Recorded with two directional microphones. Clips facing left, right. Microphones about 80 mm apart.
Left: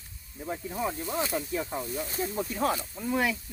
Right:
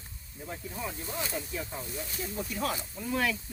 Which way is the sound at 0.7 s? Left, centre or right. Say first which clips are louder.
Left 7 dB; left.